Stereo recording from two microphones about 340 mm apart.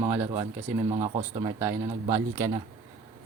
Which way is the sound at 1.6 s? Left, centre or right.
Centre.